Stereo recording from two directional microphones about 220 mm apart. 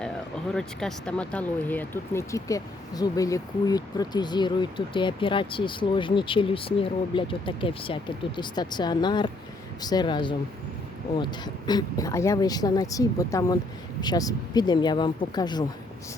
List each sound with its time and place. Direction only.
0.5 s speech: centre (ahead or behind); by 15.6 s 20° left (ahead or behind)